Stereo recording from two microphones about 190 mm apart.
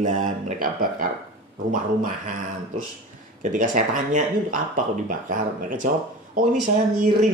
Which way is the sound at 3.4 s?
45° right (ahead or behind).